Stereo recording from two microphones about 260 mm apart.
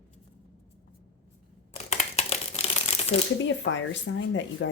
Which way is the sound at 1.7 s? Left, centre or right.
Left.